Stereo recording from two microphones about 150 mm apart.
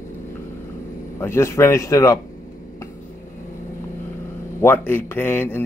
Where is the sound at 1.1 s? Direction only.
15° left (ahead or behind).